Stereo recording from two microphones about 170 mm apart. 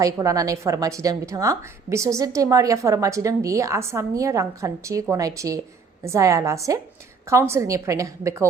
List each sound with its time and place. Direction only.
0.0 s a woman's voice: 20° right (ahead or behind)